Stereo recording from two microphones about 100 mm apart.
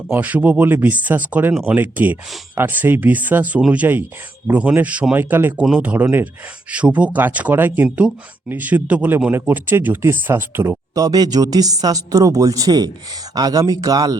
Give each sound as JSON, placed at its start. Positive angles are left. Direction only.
{"t": 0.1, "sound": "speech", "side_deg": -15}
{"t": 7.9, "sound": "speech", "side_deg": -10}